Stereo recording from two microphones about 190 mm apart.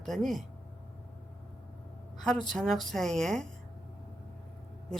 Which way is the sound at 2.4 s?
Centre (ahead or behind).